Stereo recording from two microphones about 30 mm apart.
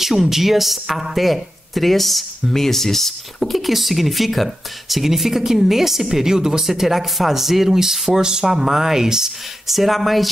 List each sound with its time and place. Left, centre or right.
0.0 s speech: centre
3.5 s speech: centre; by 6.6 s right
6.6 s speech: centre
8.1 s speech: right
8.5 s speech: centre
9.7 s speech: centre